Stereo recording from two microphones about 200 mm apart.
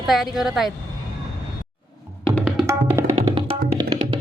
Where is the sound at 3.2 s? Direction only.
25° right (ahead or behind).